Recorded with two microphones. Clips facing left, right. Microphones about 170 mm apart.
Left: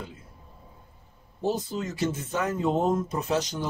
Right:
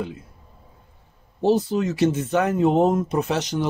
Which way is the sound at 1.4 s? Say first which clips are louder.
Right 9 dB; 75° right (ahead or behind).